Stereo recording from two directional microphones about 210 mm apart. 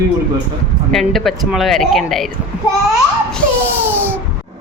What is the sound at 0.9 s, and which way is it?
Speech, centre (ahead or behind).